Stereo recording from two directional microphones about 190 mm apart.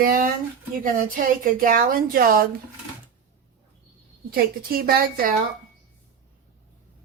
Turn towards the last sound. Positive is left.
turn(degrees=-50)  # may be behind; listen again after turning